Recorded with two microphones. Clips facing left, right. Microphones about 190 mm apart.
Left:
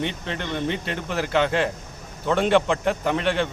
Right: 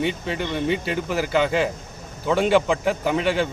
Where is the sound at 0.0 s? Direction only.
5° right (ahead or behind).